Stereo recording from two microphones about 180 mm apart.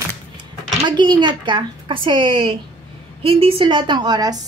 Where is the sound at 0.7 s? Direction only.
25° right (ahead or behind).